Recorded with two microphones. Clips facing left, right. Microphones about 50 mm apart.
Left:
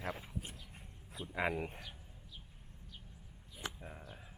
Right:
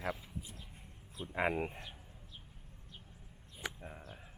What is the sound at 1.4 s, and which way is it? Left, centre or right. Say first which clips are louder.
Speech: right 2 dB; right.